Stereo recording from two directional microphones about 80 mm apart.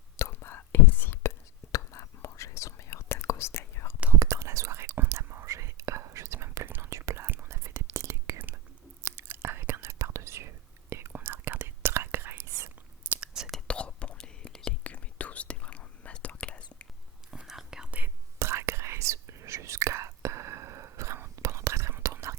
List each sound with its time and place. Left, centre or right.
0.2 s whispering: left
1.7 s whispering: left
4.2 s whispering: right
13.1 s whispering: centre
13.5 s whispering: centre
17.3 s whispering: centre
18.3 s whispering: right